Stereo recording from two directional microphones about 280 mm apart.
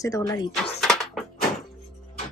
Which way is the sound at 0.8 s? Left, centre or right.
Centre.